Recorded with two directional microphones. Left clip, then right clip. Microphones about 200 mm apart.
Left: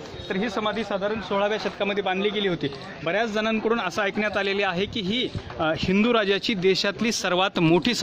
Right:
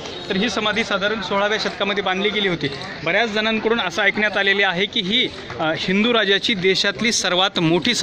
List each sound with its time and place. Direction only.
0.3 s speech: 25° left (ahead or behind); by 8.0 s 45° left (ahead or behind)